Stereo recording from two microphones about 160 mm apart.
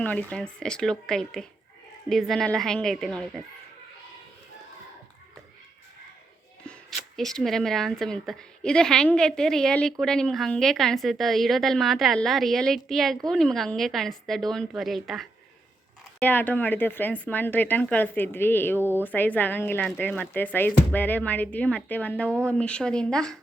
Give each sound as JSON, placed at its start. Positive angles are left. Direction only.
{"t": 0.0, "sound": "speech", "side_deg": 10}
{"t": 6.7, "sound": "speech", "side_deg": 0}
{"t": 16.2, "sound": "speech", "side_deg": 10}
{"t": 18.8, "sound": "speech", "side_deg": -15}
{"t": 19.0, "sound": "speech", "side_deg": 10}